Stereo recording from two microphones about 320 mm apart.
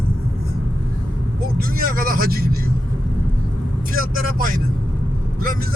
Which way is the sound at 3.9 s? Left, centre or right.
Right.